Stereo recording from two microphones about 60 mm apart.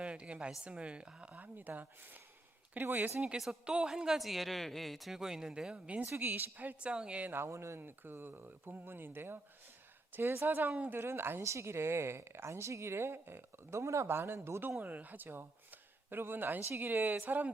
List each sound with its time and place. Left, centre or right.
0.0 s a woman's voice: centre; by 3.2 s right
3.7 s speech: centre
6.1 s speech: right; by 7.2 s centre
7.3 s speech: right
11.4 s a woman's voice: right
14.1 s a woman's voice: right
14.8 s speech: right